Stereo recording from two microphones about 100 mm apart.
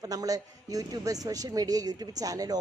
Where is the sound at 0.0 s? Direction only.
40° right (ahead or behind).